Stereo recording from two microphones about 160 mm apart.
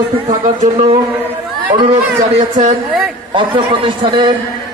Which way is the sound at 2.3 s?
40° right (ahead or behind).